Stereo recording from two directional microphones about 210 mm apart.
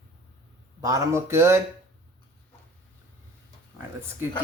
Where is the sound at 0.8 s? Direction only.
15° right (ahead or behind).